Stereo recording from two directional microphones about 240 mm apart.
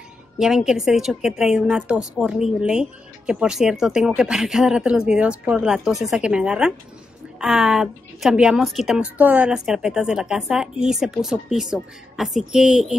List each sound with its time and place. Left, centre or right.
0.4 s a woman's voice: centre